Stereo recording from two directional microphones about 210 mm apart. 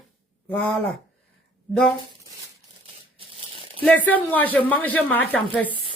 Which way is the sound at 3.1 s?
25° right (ahead or behind).